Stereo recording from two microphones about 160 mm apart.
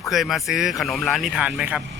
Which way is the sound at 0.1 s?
Centre (ahead or behind).